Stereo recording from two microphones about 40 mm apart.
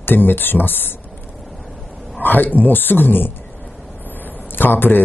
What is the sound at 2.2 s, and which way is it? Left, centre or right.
Speech, left.